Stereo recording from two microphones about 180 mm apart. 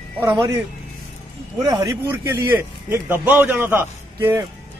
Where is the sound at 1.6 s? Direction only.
20° right (ahead or behind).